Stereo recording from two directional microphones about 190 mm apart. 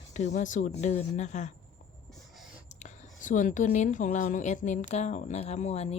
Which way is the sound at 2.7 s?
40° left (ahead or behind).